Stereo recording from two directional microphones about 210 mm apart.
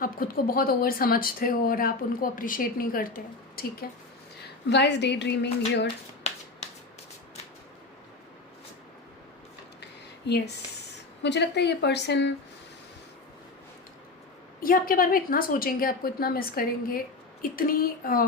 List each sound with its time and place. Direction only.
0.0 s a woman's voice: 45° left (ahead or behind)
6.3 s finger snapping: 30° left (ahead or behind)
10.2 s speech: 50° left (ahead or behind)
14.6 s speech: 40° left (ahead or behind)